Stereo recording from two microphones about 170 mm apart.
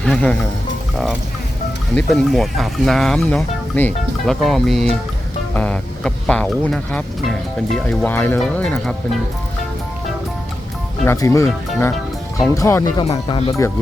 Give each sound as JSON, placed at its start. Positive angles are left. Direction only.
{"t": 0.0, "sound": "speech", "side_deg": 5}
{"t": 2.0, "sound": "speech", "side_deg": 5}
{"t": 11.0, "sound": "speech", "side_deg": 15}
{"t": 12.5, "sound": "speech", "side_deg": 20}